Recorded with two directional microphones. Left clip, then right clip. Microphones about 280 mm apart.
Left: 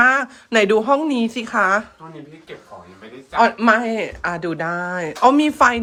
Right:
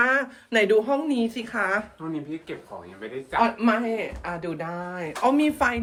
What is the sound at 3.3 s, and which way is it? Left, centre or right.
Speech, left.